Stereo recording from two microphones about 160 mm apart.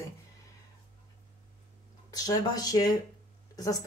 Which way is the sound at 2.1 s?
25° left (ahead or behind).